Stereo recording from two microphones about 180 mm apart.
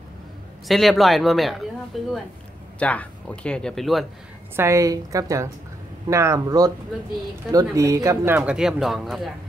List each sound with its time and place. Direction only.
0.7 s speech: centre (ahead or behind)
4.6 s speech: 15° right (ahead or behind); by 9.3 s centre (ahead or behind)